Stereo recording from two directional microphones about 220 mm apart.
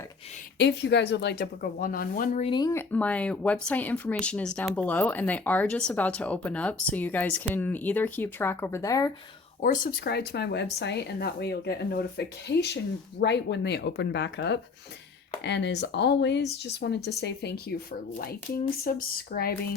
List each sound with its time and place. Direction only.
0.6 s speech: 50° left (ahead or behind); by 9.1 s 15° left (ahead or behind)
9.6 s speech: 45° left (ahead or behind)
18.9 s speech: 40° left (ahead or behind)